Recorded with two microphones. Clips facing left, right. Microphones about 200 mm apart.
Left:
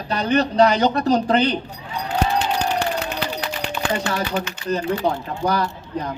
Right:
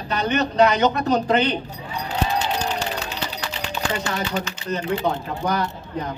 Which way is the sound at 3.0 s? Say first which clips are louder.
Left 4 dB; 60° left (ahead or behind).